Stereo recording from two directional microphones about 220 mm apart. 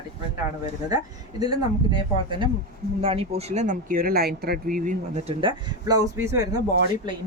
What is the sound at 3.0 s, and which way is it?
Speech, 25° right (ahead or behind).